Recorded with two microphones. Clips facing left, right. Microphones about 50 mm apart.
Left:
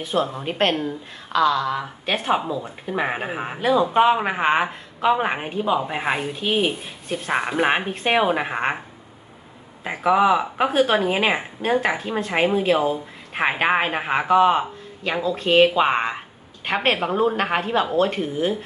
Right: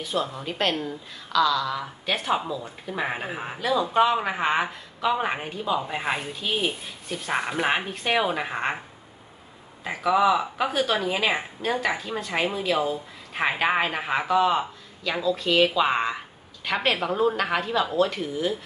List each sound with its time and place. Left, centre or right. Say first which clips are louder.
0.0 s speech: left 5 dB; left
9.8 s speech: left 3 dB; left